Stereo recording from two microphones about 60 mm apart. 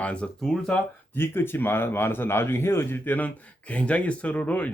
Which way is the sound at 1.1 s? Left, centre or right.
Left.